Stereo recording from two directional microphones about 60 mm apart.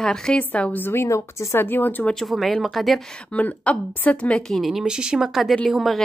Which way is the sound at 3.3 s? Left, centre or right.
Left.